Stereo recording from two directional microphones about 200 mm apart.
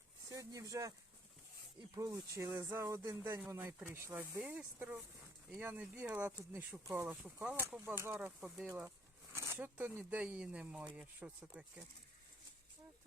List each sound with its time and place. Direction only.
0.3 s speech: 15° right (ahead or behind)
2.0 s speech: 20° right (ahead or behind)